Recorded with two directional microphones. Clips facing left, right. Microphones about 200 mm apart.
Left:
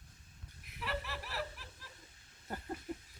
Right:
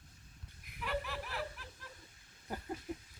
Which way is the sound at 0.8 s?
Centre (ahead or behind).